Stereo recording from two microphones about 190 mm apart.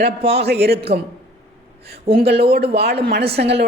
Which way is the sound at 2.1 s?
55° right (ahead or behind).